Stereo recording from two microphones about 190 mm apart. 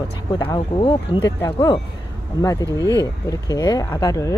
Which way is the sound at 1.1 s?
25° left (ahead or behind).